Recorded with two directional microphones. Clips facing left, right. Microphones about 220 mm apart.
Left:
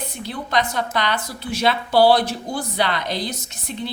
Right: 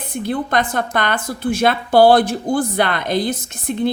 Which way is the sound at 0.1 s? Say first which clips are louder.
Right 8 dB; 50° right (ahead or behind).